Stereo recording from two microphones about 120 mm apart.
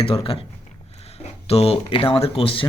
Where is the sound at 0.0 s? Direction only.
50° left (ahead or behind).